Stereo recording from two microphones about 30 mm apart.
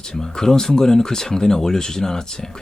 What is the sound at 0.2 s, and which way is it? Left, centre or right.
Speech, centre.